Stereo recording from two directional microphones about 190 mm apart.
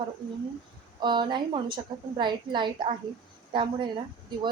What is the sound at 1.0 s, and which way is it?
Speech, 25° right (ahead or behind).